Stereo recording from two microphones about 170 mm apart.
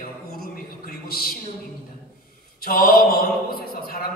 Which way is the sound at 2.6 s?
65° left (ahead or behind).